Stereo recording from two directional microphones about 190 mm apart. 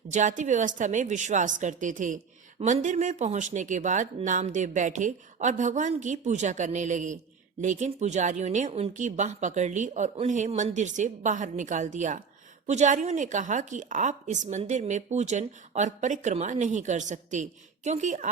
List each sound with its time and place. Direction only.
0.1 s a woman's voice: 40° right (ahead or behind)